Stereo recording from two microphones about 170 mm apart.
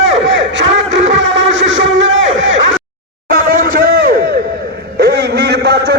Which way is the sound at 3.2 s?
55° right (ahead or behind).